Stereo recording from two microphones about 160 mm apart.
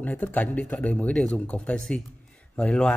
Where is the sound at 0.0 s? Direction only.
10° left (ahead or behind).